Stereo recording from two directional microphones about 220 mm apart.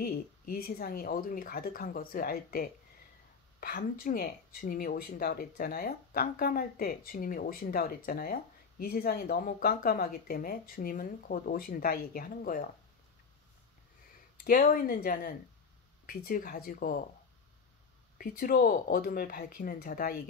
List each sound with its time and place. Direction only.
0.0 s speech: 40° left (ahead or behind)
14.4 s speech: 40° left (ahead or behind)
18.1 s speech: 40° left (ahead or behind)